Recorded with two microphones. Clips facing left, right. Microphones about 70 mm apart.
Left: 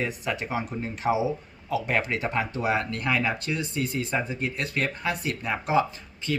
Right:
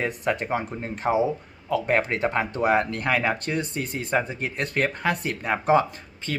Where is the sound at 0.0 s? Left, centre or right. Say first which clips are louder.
Right 4 dB; right.